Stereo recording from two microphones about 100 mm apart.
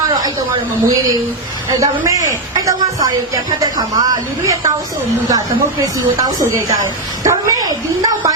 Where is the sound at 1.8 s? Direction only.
35° right (ahead or behind).